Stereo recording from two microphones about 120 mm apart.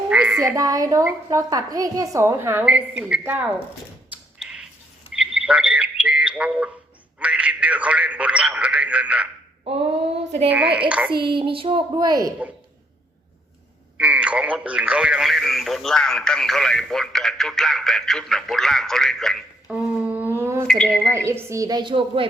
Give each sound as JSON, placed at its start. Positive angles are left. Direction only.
{"t": 0.1, "sound": "frog", "side_deg": -10}
{"t": 0.4, "sound": "a woman's voice", "side_deg": -25}
{"t": 4.4, "sound": "a sound", "side_deg": -5}
{"t": 5.1, "sound": "bird", "side_deg": -10}
{"t": 7.2, "sound": "a sound", "side_deg": -10}
{"t": 10.5, "sound": "a woman's voice", "side_deg": -10}
{"t": 11.2, "sound": "a woman's voice", "side_deg": -45}
{"t": 14.0, "sound": "speech", "side_deg": -10}
{"t": 19.7, "sound": "a sound", "side_deg": -10}
{"t": 20.7, "sound": "speech", "side_deg": 5}
{"t": 21.2, "sound": "a woman's voice", "side_deg": -25}